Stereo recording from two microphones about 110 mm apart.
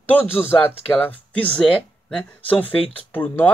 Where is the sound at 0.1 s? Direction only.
20° left (ahead or behind).